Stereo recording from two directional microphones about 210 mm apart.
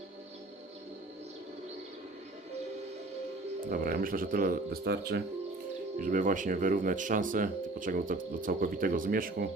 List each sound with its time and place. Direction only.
3.7 s speech: 45° right (ahead or behind)
6.0 s speech: 40° right (ahead or behind)